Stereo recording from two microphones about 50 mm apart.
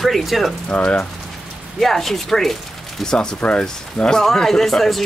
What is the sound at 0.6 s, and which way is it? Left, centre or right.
Speech, left.